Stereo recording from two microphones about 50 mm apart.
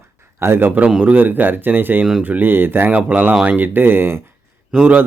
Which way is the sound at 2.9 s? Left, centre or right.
Right.